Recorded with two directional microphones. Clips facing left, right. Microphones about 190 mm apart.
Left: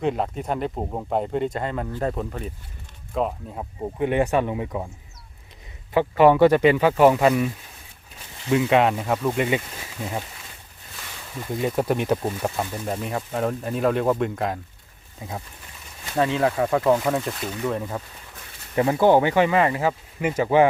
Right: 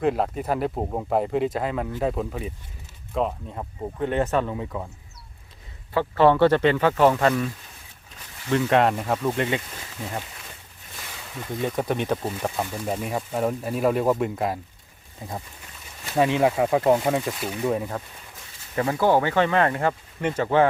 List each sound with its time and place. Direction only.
0.0 s speech: centre (ahead or behind); by 4.9 s 15° left (ahead or behind)
5.9 s speech: 15° left (ahead or behind)
11.3 s speech: 5° left (ahead or behind)
16.1 s speech: 15° right (ahead or behind)
18.8 s speech: 20° left (ahead or behind)